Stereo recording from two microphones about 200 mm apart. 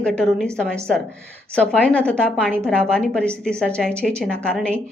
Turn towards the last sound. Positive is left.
turn(degrees=5)  # may be behind; listen again after turning